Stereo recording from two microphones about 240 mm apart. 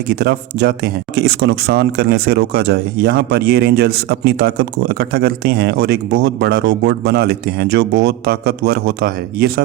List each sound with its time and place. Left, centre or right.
0.1 s speech: right